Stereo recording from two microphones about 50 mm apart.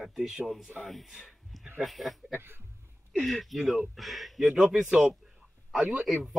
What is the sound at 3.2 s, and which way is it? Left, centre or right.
Speech, centre.